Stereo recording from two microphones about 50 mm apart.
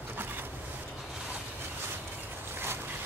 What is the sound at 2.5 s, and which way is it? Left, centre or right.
Vehicle, right.